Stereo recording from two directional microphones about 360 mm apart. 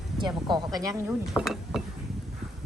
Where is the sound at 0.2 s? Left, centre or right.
Centre.